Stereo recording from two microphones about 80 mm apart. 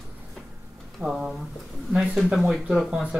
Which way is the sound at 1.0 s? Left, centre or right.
Centre.